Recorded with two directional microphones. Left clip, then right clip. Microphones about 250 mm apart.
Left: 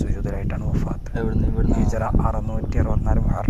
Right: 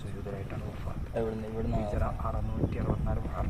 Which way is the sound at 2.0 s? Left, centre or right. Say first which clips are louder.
Left 10 dB; left.